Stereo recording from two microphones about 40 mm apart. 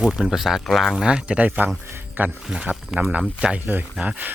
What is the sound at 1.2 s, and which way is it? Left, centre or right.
Speech, right.